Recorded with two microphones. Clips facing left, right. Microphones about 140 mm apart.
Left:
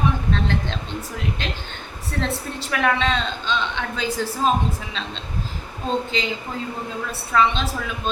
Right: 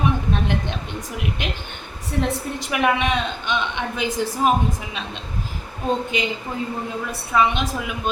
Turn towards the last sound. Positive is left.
turn(degrees=-15)  # may be behind; listen again after turning